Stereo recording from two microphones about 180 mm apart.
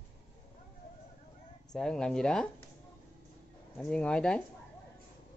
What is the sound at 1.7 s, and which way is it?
Speech, 5° left (ahead or behind).